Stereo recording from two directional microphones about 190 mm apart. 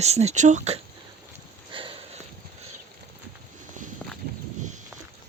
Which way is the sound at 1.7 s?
25° right (ahead or behind).